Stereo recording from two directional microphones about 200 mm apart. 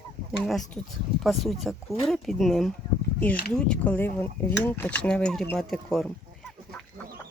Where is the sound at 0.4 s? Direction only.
Centre (ahead or behind).